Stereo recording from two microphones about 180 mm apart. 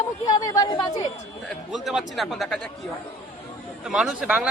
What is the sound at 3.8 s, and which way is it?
Speech, 5° right (ahead or behind).